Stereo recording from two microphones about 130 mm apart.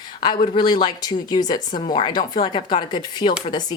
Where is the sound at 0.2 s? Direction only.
35° left (ahead or behind).